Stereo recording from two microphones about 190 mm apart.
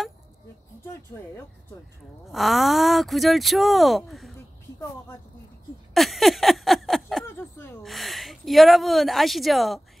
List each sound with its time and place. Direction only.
0.8 s speech: 15° left (ahead or behind)
2.2 s speech: centre (ahead or behind)
5.9 s a sound: centre (ahead or behind)
7.8 s speech: centre (ahead or behind)